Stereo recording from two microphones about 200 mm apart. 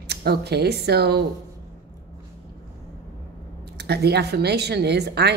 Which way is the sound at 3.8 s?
55° right (ahead or behind).